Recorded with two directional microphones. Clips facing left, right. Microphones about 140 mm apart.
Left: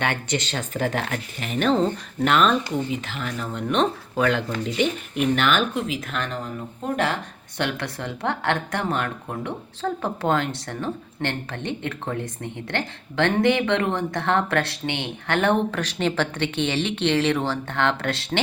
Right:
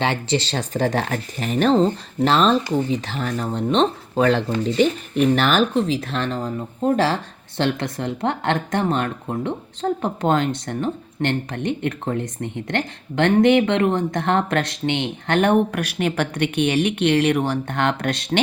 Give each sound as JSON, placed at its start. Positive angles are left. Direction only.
{"t": 0.0, "sound": "a woman's voice", "side_deg": -25}